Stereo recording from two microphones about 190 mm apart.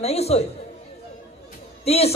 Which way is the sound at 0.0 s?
35° left (ahead or behind).